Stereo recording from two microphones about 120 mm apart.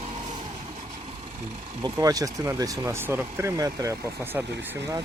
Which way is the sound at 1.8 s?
30° right (ahead or behind).